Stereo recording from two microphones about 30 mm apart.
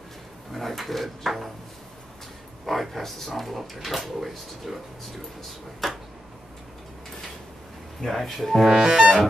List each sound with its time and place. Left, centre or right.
0.5 s drawer open or close: centre
2.6 s speech: centre
5.8 s speech: centre
8.1 s speech: centre